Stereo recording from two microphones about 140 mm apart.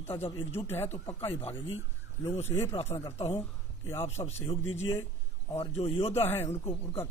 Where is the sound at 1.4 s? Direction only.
40° left (ahead or behind).